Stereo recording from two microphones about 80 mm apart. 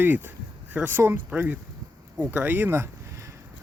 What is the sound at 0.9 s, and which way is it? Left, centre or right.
Speech, right.